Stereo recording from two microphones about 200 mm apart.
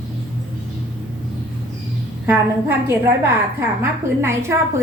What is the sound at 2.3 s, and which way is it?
A woman's voice, 10° right (ahead or behind).